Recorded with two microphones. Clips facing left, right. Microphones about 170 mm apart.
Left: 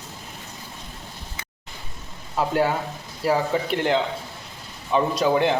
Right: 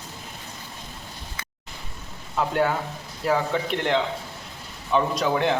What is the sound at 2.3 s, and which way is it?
Speech, 5° left (ahead or behind).